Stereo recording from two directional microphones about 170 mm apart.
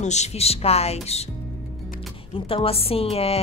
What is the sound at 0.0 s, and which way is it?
A woman's voice, 40° left (ahead or behind).